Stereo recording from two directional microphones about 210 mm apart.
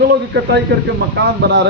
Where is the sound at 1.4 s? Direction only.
55° right (ahead or behind).